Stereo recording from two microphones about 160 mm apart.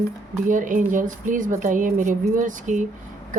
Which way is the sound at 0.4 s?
55° right (ahead or behind).